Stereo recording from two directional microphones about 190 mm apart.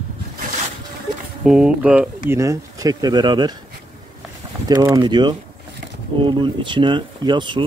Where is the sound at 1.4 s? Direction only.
5° right (ahead or behind); by 3.5 s 20° right (ahead or behind).